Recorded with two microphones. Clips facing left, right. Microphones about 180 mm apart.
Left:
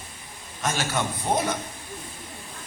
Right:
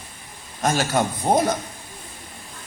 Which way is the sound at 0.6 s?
40° right (ahead or behind).